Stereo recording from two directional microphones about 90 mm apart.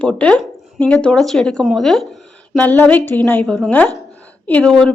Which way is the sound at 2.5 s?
15° left (ahead or behind).